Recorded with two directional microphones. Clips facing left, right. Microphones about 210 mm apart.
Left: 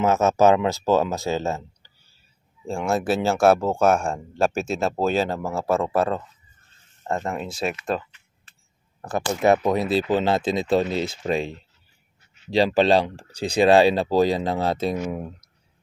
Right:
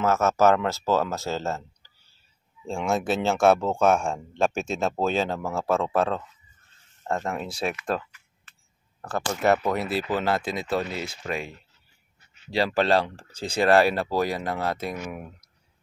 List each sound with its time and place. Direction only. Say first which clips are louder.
0.0 s speech: left 3 dB; 15° left (ahead or behind)
2.6 s speech: left 2 dB; 5° left (ahead or behind)
9.0 s speech: left 3 dB; 15° left (ahead or behind)